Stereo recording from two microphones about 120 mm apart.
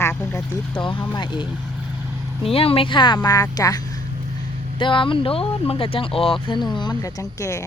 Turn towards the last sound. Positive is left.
turn(degrees=25)  # may be behind; listen again after turning